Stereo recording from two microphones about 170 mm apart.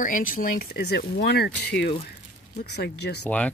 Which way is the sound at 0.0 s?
50° left (ahead or behind).